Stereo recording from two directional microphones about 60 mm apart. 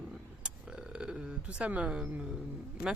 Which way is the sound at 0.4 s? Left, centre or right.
Centre.